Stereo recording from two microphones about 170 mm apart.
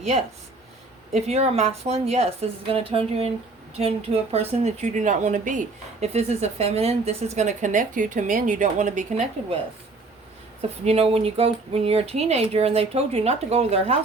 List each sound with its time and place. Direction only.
1.1 s speech: 40° right (ahead or behind)
10.8 s speech: 35° right (ahead or behind)